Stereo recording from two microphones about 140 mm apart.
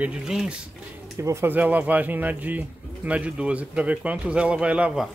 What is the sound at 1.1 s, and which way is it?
Speech, 20° right (ahead or behind).